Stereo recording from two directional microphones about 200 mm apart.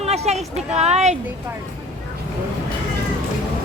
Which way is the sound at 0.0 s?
35° right (ahead or behind).